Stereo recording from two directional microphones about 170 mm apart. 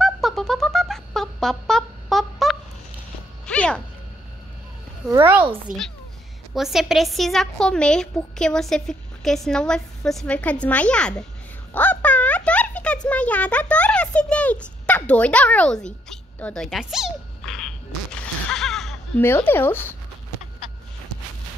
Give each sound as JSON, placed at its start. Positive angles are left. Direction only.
{"t": 0.0, "sound": "music", "side_deg": 0}
{"t": 5.1, "sound": "speech", "side_deg": -10}
{"t": 5.7, "sound": "a child's voice", "side_deg": -50}
{"t": 6.5, "sound": "a woman's voice", "side_deg": 0}
{"t": 11.7, "sound": "a sound", "side_deg": 10}
{"t": 19.2, "sound": "speech", "side_deg": 15}